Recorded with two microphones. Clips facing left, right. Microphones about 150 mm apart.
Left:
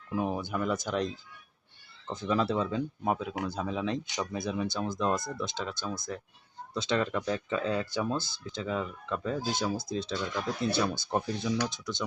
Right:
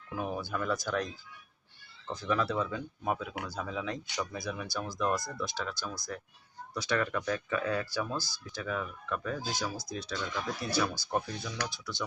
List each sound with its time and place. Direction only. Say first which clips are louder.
0.2 s speech: left 3 dB; 20° left (ahead or behind)